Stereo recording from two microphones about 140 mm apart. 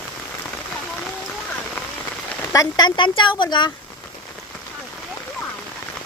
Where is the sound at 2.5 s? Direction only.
30° left (ahead or behind).